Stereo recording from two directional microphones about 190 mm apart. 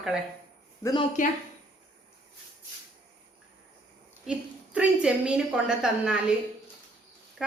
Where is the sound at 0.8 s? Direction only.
20° left (ahead or behind).